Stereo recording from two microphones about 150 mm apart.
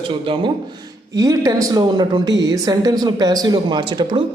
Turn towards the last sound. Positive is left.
turn(degrees=-30)  # may be behind; listen again after turning